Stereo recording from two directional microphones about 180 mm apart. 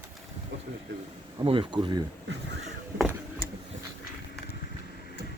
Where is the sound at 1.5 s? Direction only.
30° right (ahead or behind).